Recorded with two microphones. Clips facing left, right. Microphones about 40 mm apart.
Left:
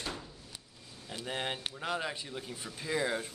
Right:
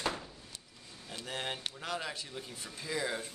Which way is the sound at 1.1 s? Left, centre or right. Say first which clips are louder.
Left 2 dB; centre.